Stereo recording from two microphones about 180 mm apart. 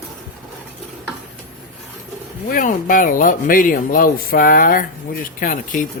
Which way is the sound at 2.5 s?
50° left (ahead or behind).